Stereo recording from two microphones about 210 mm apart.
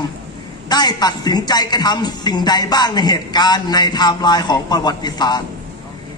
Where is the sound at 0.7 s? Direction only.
20° left (ahead or behind).